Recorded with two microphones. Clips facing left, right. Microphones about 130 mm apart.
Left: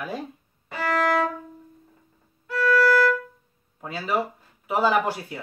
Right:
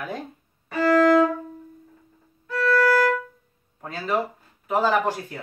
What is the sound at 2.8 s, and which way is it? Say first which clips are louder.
Violin: even; 50° right (ahead or behind).